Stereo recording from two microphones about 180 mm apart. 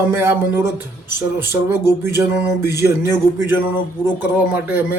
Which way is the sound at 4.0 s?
10° right (ahead or behind).